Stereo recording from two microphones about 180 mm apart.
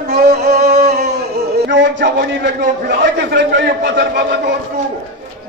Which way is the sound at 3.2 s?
75° right (ahead or behind).